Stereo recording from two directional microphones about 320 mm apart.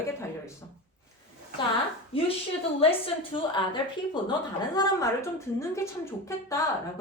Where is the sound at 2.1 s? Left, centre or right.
Centre.